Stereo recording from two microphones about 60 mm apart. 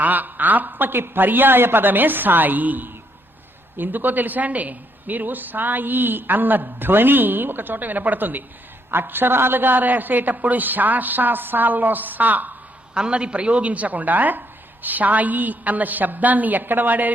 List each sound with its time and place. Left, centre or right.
0.0 s a woman's voice: right
12.9 s a woman's voice: centre